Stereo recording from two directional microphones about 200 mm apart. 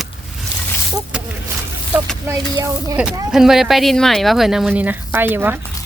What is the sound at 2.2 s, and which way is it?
Speech, 15° right (ahead or behind).